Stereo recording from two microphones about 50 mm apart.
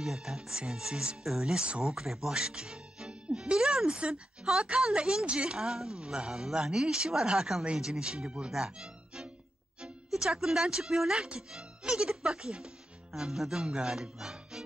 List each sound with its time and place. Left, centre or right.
0.0 s a woman's voice: centre
8.5 s music: centre
9.8 s a woman's voice: centre